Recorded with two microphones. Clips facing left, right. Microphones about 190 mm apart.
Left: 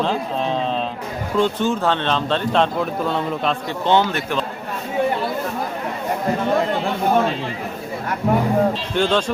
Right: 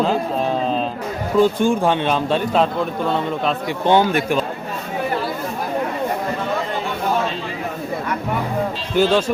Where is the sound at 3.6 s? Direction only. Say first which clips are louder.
Right 3 dB; 15° right (ahead or behind).